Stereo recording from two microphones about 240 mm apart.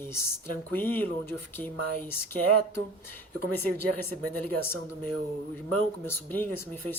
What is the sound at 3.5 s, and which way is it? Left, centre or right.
Speech, centre.